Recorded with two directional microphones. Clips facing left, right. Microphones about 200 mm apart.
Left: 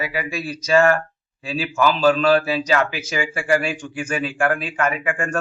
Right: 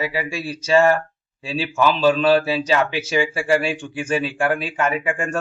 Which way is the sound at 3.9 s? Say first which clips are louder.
Right 2 dB; 30° right (ahead or behind).